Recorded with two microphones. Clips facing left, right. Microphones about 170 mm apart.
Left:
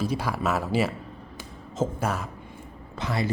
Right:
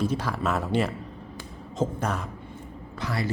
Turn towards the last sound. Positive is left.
turn(degrees=20)  # may be behind; listen again after turning